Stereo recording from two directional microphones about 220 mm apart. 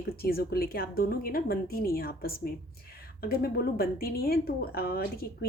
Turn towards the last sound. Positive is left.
turn(degrees=45)  # may be behind; listen again after turning